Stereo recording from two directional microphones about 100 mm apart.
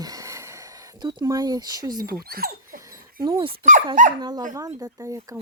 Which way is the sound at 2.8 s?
35° right (ahead or behind).